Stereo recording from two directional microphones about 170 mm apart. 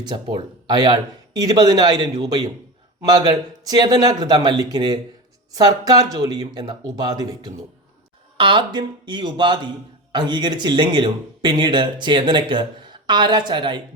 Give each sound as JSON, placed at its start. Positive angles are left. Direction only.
{"t": 0.1, "sound": "speech", "side_deg": -25}